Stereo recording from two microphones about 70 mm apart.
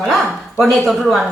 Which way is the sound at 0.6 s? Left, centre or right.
Centre.